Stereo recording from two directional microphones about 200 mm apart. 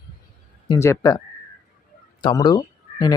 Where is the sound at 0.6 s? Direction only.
15° left (ahead or behind).